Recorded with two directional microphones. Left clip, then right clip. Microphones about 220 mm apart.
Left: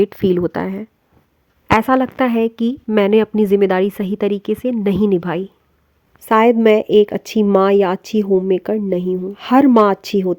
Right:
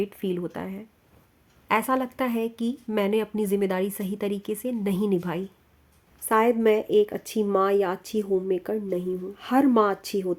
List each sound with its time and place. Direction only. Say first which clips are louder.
0.0 s speech: left 13 dB; 40° left (ahead or behind)